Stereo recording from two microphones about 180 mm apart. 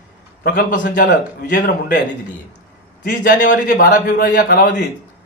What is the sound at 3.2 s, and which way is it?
A man's voice, 45° left (ahead or behind).